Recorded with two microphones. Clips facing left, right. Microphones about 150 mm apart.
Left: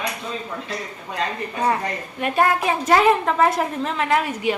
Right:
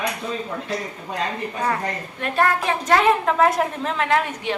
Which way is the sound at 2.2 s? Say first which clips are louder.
Left 2 dB; 10° left (ahead or behind).